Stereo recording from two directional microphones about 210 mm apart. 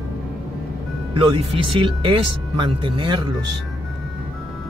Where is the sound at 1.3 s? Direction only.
25° right (ahead or behind).